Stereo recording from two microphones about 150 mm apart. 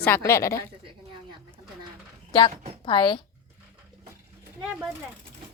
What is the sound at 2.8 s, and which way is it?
Speech, 30° left (ahead or behind).